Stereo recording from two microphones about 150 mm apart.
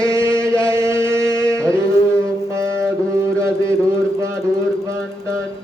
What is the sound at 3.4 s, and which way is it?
Mantra, 20° right (ahead or behind).